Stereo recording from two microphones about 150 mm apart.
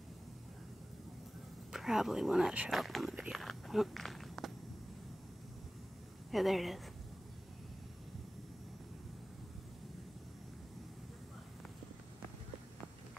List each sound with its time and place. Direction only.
1.7 s speech: 5° right (ahead or behind)
6.3 s speech: centre (ahead or behind)